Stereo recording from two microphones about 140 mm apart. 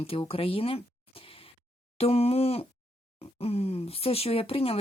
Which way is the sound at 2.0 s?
45° left (ahead or behind).